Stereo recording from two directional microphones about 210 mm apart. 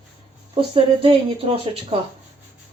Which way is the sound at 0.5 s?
25° right (ahead or behind).